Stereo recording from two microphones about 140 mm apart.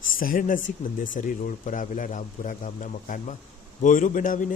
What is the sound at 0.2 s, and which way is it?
Speech, 80° left.